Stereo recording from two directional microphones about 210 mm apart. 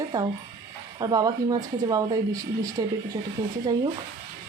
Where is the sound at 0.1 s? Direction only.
20° right (ahead or behind).